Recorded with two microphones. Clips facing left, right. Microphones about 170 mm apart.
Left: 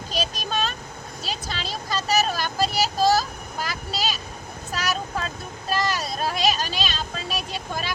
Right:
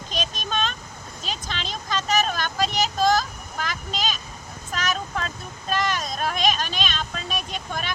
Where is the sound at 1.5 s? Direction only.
5° left (ahead or behind).